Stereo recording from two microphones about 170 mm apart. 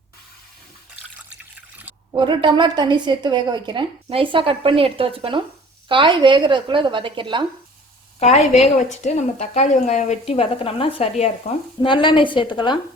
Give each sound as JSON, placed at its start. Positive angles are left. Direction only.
{"t": 2.1, "sound": "a woman's voice", "side_deg": -30}
{"t": 8.2, "sound": "a woman's voice", "side_deg": 40}
{"t": 11.8, "sound": "a woman's voice", "side_deg": 30}